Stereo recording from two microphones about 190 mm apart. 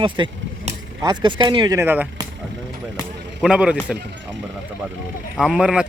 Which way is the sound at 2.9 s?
5° right (ahead or behind).